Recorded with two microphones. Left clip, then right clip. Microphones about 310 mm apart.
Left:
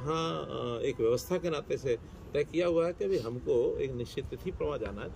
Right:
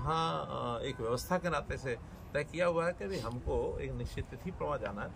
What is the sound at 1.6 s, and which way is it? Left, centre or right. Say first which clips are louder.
Speech: left 7 dB; right.